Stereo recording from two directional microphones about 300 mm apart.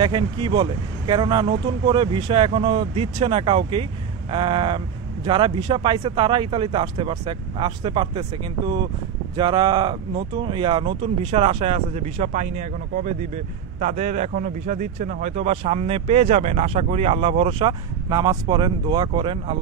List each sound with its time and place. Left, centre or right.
0.0 s speech: centre